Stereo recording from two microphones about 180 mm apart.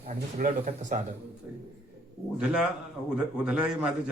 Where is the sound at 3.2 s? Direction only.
5° right (ahead or behind).